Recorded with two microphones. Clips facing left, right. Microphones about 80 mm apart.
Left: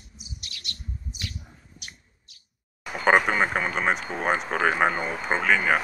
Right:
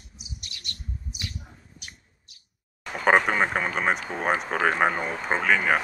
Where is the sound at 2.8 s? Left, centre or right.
Centre.